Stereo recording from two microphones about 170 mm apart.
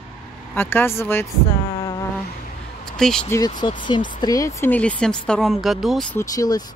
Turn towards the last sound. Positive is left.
turn(degrees=20)  # may be behind; listen again after turning